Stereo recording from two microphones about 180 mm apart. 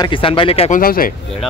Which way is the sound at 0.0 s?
30° left (ahead or behind).